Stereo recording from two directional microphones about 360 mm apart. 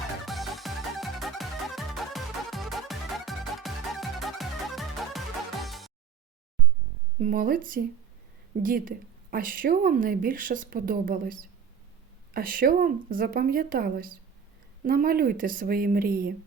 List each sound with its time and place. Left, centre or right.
0.3 s music: centre
7.2 s a woman's voice: right